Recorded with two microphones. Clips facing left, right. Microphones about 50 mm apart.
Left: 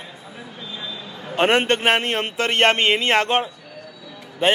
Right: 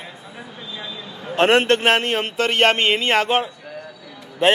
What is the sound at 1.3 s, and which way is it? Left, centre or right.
A man's voice, centre.